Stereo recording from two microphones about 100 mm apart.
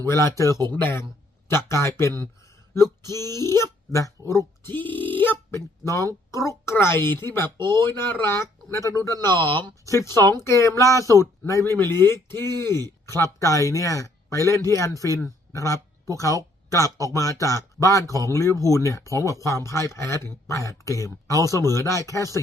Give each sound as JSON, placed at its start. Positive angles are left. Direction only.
{"t": 0.0, "sound": "speech", "side_deg": 30}
{"t": 4.7, "sound": "honk", "side_deg": 20}
{"t": 5.5, "sound": "speech", "side_deg": 30}